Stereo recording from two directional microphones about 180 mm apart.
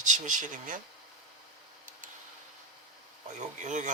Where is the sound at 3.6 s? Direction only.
45° right (ahead or behind).